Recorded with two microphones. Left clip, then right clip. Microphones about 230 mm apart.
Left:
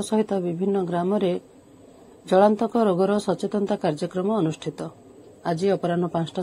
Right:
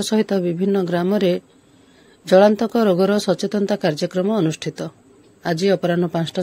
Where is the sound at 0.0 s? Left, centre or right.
Right.